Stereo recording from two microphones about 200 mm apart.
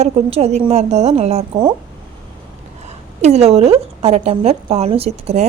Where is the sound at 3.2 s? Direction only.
35° right (ahead or behind).